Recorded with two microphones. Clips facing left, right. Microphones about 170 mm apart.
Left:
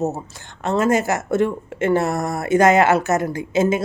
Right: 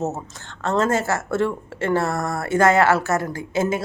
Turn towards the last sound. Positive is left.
turn(degrees=20)  # may be behind; listen again after turning